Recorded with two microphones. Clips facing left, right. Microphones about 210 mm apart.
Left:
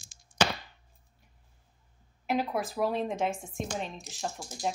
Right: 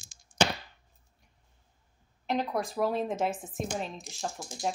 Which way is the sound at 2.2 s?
5° left (ahead or behind).